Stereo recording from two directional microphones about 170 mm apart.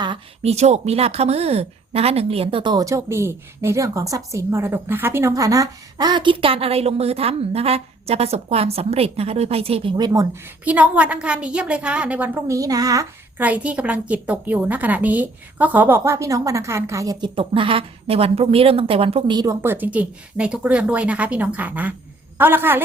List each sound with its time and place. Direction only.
0.0 s speech: 30° right (ahead or behind)
0.5 s speech: 40° right (ahead or behind); by 10.2 s 20° right (ahead or behind)
10.7 s a woman's voice: 10° right (ahead or behind)
13.4 s a woman's voice: 10° right (ahead or behind); by 19.5 s 25° right (ahead or behind)
19.6 s a woman's voice: 10° right (ahead or behind)